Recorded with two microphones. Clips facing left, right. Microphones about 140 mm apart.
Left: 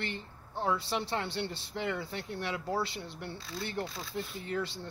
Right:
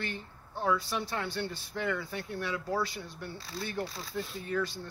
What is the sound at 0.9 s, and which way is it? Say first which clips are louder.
Speech: left 1 dB; 25° left (ahead or behind).